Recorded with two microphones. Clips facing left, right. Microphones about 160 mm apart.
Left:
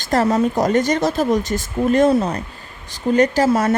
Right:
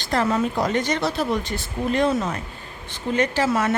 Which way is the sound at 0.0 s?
40° left (ahead or behind).